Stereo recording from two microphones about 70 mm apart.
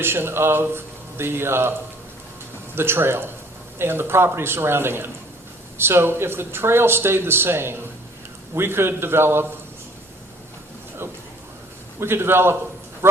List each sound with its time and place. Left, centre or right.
0.0 s speech: right
2.7 s speech: right
11.9 s speech: right